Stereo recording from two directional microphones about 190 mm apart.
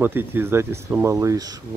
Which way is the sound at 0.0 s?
10° right (ahead or behind).